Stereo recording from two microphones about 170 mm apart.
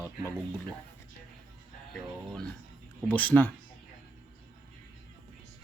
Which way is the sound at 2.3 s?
5° left (ahead or behind).